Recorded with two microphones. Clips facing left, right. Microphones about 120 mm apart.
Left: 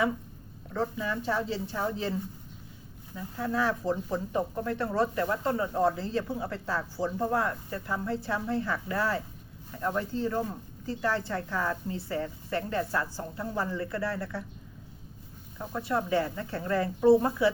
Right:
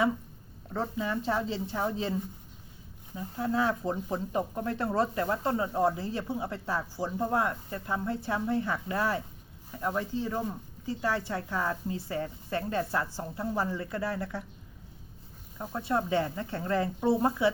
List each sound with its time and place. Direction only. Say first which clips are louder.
0.8 s speech: even; 25° right (ahead or behind)
3.2 s speech: right 1 dB; 25° right (ahead or behind)
15.5 s speech: even; 20° right (ahead or behind)